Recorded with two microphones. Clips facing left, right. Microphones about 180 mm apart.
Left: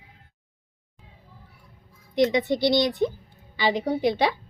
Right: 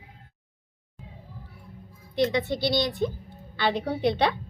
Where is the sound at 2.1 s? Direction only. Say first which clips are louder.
Left 3 dB; 20° left (ahead or behind).